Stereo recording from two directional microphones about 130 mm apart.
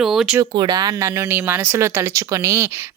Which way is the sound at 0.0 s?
5° right (ahead or behind).